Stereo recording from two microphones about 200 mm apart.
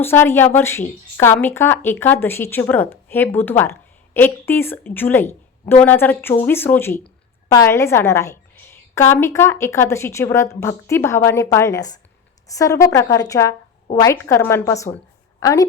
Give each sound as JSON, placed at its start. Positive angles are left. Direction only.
{"t": 0.0, "sound": "a woman's voice", "side_deg": 10}